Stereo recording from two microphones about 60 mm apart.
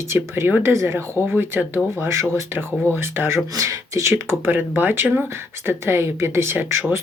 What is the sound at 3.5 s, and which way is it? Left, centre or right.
Speech, right.